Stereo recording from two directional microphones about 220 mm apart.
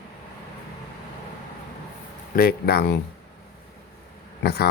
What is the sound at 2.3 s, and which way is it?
Speech, 45° left (ahead or behind).